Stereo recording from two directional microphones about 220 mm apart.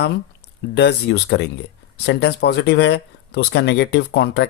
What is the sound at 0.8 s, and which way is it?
Speech, 50° left (ahead or behind).